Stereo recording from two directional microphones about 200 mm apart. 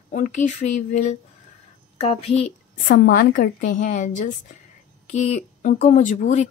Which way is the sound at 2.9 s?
50° left (ahead or behind).